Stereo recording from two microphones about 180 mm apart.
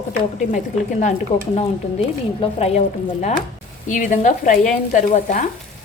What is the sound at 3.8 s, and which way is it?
Stir, 45° left (ahead or behind).